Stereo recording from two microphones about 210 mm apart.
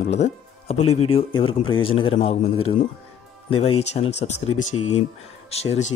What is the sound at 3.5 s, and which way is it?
A man's voice, 25° left (ahead or behind).